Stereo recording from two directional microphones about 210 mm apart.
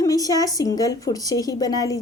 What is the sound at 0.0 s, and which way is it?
Speech, 15° left (ahead or behind).